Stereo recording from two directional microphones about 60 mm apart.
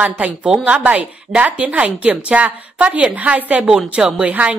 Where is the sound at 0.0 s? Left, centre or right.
Right.